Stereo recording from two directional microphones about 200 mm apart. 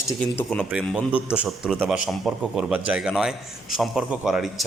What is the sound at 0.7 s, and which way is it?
A man's voice, 5° right (ahead or behind).